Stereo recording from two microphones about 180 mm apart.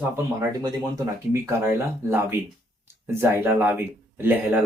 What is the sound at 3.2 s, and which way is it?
Speech, 10° right (ahead or behind).